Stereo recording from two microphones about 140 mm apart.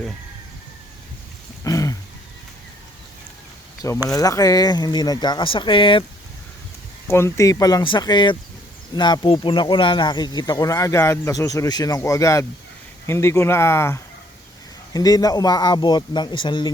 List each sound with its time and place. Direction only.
1.6 s a sound: 25° left (ahead or behind)
3.8 s speech: 20° left (ahead or behind); by 6.1 s 35° left (ahead or behind)
7.1 s speech: 20° left (ahead or behind); by 16.7 s 35° left (ahead or behind)